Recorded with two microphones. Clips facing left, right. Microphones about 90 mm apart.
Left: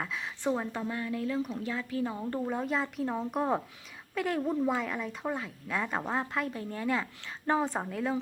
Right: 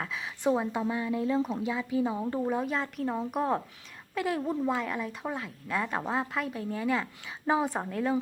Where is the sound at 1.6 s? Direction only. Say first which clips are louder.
Right 4 dB; 15° right (ahead or behind).